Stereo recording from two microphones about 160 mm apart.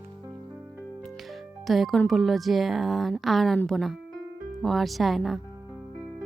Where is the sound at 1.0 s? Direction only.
Centre (ahead or behind).